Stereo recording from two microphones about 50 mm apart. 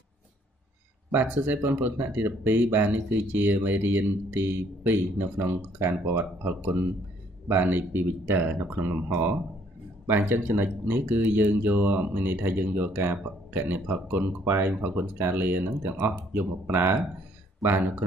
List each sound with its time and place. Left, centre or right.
1.1 s speech: right